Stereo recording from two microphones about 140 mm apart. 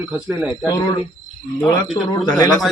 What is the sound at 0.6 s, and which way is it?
Speech, 30° left (ahead or behind).